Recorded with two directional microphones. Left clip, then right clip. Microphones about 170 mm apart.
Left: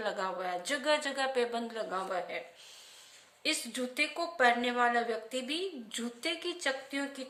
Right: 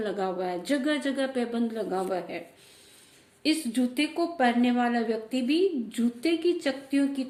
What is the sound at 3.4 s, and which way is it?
A woman's voice, 15° left (ahead or behind).